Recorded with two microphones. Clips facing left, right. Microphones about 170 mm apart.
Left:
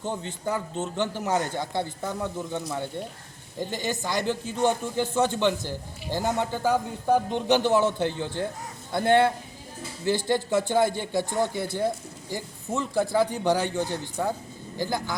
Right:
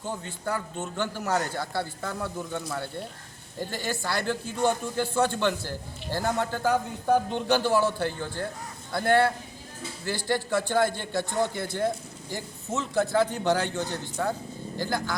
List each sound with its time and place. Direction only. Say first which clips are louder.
0.4 s a man's voice: left 2 dB; 15° left (ahead or behind)